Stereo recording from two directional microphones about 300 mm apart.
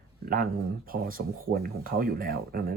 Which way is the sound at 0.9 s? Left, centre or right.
Right.